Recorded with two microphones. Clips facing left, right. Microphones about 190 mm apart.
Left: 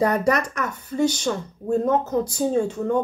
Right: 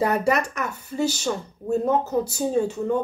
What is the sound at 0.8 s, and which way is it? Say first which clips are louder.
Speech: left 3 dB; 5° right (ahead or behind).